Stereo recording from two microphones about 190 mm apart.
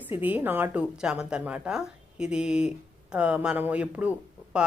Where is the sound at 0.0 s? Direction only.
10° right (ahead or behind).